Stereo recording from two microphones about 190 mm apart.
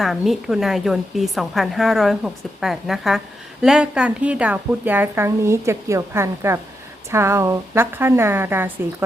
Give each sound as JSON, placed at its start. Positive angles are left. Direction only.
{"t": 0.0, "sound": "a woman's voice", "side_deg": 0}